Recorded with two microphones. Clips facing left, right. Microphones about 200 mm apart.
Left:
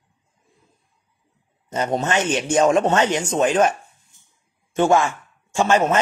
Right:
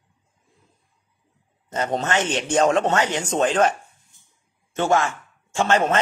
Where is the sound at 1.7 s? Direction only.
15° left (ahead or behind).